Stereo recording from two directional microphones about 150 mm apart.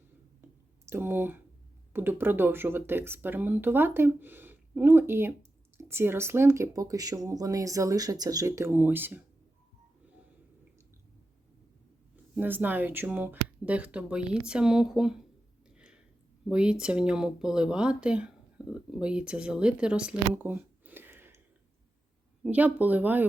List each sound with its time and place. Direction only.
0.4 s clicking: 15° right (ahead or behind)
0.9 s speech: 15° right (ahead or behind)
12.3 s speech: 10° right (ahead or behind)
15.7 s a sound: 5° right (ahead or behind)
16.5 s speech: 5° right (ahead or behind)
22.4 s speech: 10° right (ahead or behind)